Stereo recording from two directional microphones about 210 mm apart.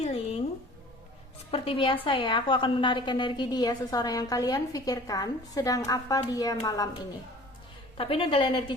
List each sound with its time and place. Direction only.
0.0 s a sound: 30° left (ahead or behind)
1.5 s a woman's voice: 25° left (ahead or behind)
7.9 s a woman's voice: 25° left (ahead or behind)